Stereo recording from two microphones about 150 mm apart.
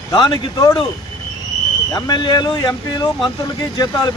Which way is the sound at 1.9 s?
25° left (ahead or behind).